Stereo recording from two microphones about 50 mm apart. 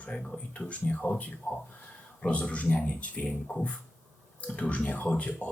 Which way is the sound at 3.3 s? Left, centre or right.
Centre.